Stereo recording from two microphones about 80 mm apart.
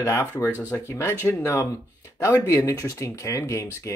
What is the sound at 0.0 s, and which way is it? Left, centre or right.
Speech, left.